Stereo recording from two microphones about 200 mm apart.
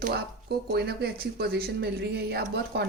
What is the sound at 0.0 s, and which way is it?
Speech, 50° right (ahead or behind).